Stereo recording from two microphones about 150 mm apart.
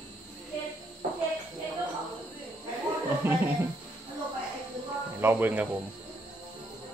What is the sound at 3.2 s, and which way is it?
Speech, 15° right (ahead or behind).